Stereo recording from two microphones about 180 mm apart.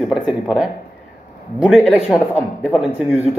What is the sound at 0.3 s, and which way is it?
Speech, 5° right (ahead or behind).